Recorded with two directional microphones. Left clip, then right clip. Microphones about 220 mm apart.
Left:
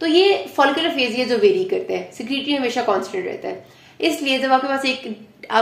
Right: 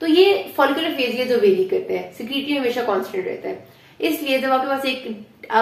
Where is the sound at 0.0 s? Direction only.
40° left (ahead or behind).